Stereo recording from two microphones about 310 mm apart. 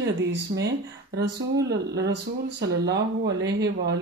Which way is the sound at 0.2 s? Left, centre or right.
Right.